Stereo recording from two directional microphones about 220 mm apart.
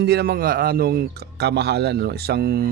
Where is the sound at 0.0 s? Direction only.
45° right (ahead or behind).